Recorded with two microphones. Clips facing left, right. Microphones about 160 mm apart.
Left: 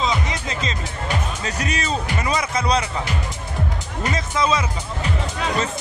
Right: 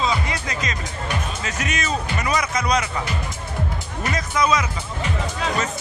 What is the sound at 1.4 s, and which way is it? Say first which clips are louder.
Speech: left 1 dB; 35° left (ahead or behind).